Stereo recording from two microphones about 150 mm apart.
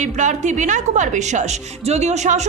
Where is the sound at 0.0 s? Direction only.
55° right (ahead or behind).